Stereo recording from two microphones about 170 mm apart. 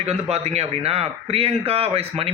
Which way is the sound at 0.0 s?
40° right (ahead or behind).